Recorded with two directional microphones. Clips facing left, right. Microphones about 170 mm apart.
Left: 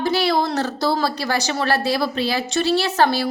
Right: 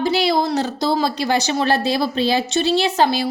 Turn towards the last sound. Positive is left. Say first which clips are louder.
# right 1 dB
turn(degrees=-15)  # may be behind; listen again after turning